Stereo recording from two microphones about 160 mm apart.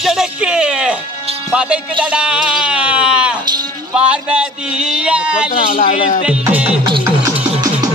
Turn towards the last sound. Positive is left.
turn(degrees=-5)  # may be behind; listen again after turning